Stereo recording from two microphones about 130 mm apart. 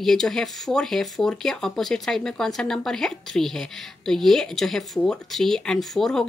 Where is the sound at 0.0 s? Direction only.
5° left (ahead or behind).